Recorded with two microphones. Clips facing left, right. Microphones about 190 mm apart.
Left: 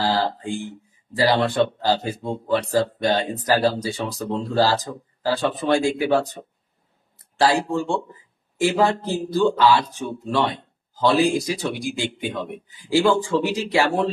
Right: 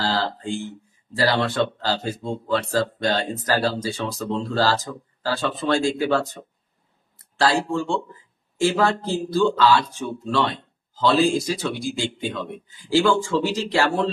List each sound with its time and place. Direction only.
0.0 s speech: 15° left (ahead or behind)